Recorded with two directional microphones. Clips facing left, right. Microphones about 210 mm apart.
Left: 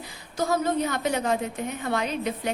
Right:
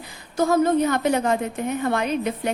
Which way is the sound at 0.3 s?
50° right (ahead or behind).